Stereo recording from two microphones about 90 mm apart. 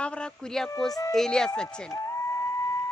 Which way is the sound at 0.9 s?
40° left (ahead or behind).